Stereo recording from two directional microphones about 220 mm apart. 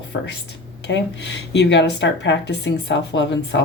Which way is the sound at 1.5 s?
50° left (ahead or behind).